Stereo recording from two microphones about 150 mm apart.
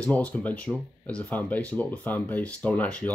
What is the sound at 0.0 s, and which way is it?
Speech, 10° left (ahead or behind).